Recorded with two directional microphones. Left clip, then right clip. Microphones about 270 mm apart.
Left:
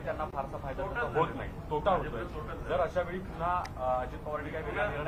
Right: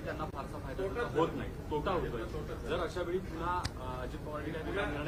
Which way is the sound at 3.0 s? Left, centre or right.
Left.